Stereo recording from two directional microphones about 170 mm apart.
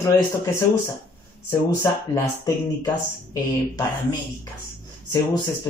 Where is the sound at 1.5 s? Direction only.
20° left (ahead or behind).